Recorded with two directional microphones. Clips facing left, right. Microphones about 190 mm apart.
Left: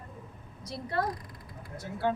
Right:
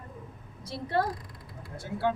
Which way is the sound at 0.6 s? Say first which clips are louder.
Right 3 dB; 30° right (ahead or behind).